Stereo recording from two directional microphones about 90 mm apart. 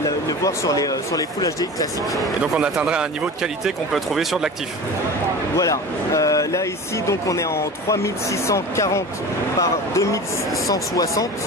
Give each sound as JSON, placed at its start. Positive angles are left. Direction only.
{"t": 0.3, "sound": "speech", "side_deg": 40}
{"t": 2.4, "sound": "speech", "side_deg": -5}
{"t": 5.6, "sound": "speech", "side_deg": 40}